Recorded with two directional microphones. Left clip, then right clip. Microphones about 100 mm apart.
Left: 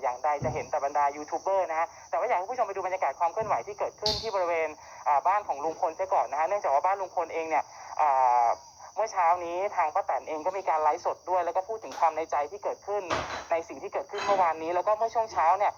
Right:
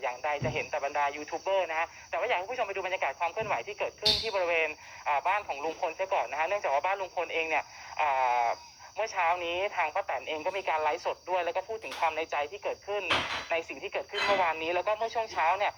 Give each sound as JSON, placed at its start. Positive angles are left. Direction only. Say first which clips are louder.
{"t": 0.0, "sound": "music", "louder": "left 4 dB", "side_deg": -30}
{"t": 0.7, "sound": "speech", "louder": "left 5 dB", "side_deg": -30}